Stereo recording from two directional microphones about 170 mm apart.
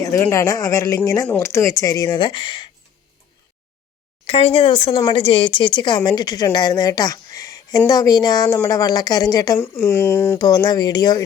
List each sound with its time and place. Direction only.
0.0 s speech: 15° left (ahead or behind)
4.3 s speech: 35° left (ahead or behind)